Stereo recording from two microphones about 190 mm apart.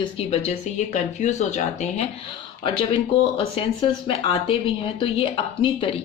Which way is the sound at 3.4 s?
30° left (ahead or behind).